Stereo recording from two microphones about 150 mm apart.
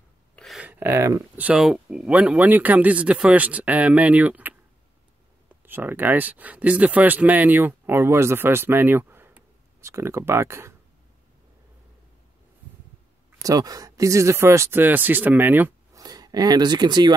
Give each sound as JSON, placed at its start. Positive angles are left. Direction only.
{"t": 0.4, "sound": "a sound", "side_deg": 0}
{"t": 0.7, "sound": "speech", "side_deg": -15}
{"t": 5.6, "sound": "speech", "side_deg": -15}
{"t": 13.4, "sound": "speech", "side_deg": -25}
{"t": 16.0, "sound": "speech", "side_deg": -25}